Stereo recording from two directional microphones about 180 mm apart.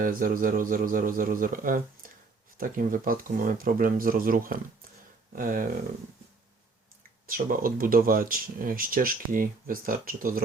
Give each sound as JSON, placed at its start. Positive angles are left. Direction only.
{"t": 0.0, "sound": "speech", "side_deg": -50}
{"t": 7.3, "sound": "speech", "side_deg": -50}